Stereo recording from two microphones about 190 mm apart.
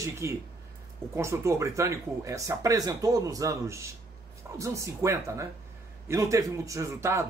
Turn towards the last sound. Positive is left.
turn(degrees=-15)  # may be behind; listen again after turning